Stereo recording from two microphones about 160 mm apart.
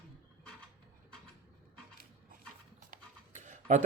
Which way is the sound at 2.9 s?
55° right (ahead or behind).